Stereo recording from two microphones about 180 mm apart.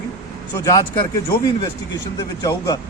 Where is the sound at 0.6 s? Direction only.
20° left (ahead or behind).